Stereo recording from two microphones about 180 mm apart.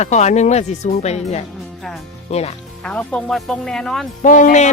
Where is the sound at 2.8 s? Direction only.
5° left (ahead or behind).